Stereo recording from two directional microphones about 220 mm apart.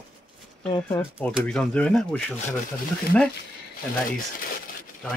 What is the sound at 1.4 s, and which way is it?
Speech, 5° left (ahead or behind).